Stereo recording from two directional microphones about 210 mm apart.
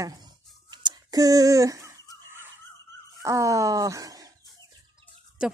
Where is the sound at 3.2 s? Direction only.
15° right (ahead or behind).